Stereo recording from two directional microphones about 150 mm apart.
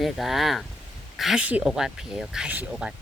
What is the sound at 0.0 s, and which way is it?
Speech, centre (ahead or behind).